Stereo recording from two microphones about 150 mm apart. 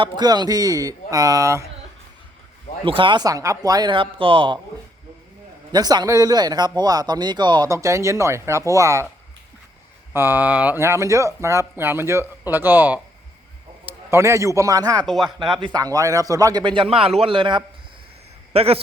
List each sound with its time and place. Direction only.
0.0 s speech: 30° right (ahead or behind)
2.8 s speech: 35° right (ahead or behind)
5.7 s speech: 25° right (ahead or behind)
10.1 s a man's voice: 15° right (ahead or behind); by 18.8 s 40° right (ahead or behind)